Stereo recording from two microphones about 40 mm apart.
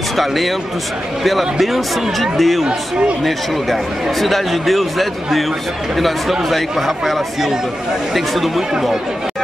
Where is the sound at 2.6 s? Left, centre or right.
Right.